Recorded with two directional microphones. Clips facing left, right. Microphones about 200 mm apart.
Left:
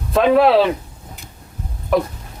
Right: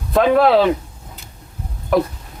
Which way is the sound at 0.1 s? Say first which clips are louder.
Even; centre (ahead or behind).